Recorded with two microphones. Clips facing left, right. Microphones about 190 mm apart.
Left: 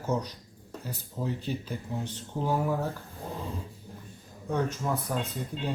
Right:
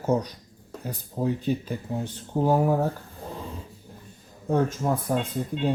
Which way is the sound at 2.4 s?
40° right (ahead or behind).